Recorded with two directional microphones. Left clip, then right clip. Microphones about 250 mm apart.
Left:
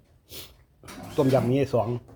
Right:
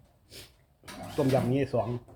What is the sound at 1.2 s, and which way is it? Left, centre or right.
Speech, left.